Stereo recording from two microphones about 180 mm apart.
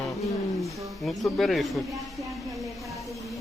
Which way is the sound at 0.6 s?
Centre (ahead or behind).